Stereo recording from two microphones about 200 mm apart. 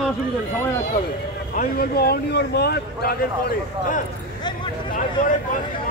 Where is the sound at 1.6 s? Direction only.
50° left (ahead or behind).